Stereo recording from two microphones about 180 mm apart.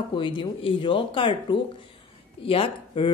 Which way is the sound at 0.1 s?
25° left (ahead or behind).